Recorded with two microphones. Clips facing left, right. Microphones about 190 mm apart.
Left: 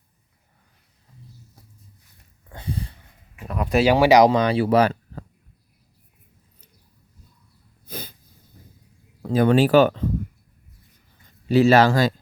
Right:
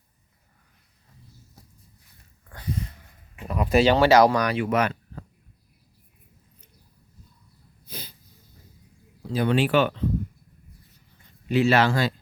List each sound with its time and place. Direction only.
2.5 s a sound: 30° left (ahead or behind)
3.4 s speech: centre (ahead or behind)
3.8 s speech: 10° left (ahead or behind); by 5.2 s 35° left (ahead or behind)
7.9 s snort: 50° left (ahead or behind)
9.2 s speech: 50° left (ahead or behind)
11.4 s speech: 40° left (ahead or behind)